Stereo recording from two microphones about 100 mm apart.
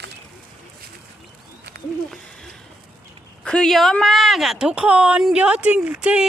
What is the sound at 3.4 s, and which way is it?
Speech, 5° left (ahead or behind).